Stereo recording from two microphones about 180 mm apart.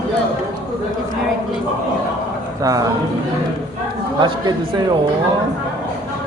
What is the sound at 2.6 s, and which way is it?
Speech, 20° right (ahead or behind).